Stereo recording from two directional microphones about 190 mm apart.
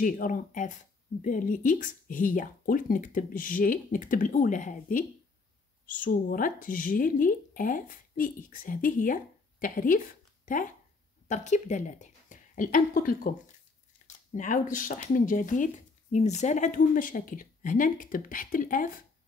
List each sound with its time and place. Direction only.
0.0 s speech: 45° left (ahead or behind)
14.3 s speech: 45° left (ahead or behind)